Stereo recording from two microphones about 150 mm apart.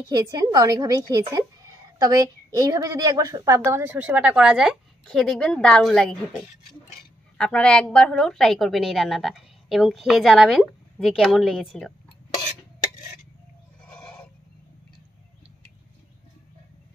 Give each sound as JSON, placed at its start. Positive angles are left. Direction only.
{"t": 0.1, "sound": "a woman's voice", "side_deg": -25}
{"t": 7.3, "sound": "a woman's voice", "side_deg": 5}
{"t": 13.8, "sound": "goat", "side_deg": 10}